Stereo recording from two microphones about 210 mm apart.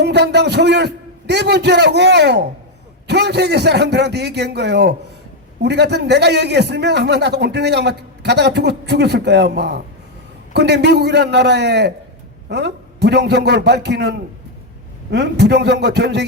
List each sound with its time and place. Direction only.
0.0 s a man's voice: 55° right (ahead or behind)